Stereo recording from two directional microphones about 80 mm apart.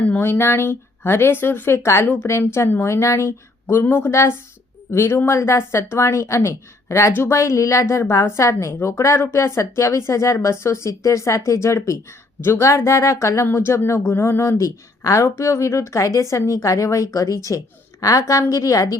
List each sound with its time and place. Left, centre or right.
0.2 s a woman's voice: left
4.1 s a woman's voice: left
14.6 s a woman's voice: left